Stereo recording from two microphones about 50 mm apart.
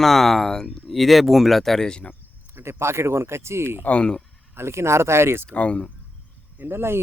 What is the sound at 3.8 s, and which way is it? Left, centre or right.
Speech, left.